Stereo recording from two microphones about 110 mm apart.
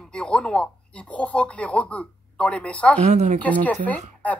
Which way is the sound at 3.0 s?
90° right.